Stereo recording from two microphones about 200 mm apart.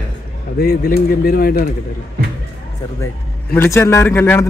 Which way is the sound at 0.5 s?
45° left (ahead or behind).